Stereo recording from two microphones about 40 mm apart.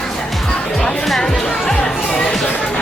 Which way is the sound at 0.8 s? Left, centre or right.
Centre.